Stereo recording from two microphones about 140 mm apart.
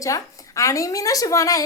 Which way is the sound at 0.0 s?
25° left (ahead or behind).